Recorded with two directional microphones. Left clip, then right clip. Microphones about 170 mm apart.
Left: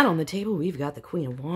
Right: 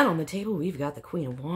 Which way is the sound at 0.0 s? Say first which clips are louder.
Left 2 dB; 35° left (ahead or behind).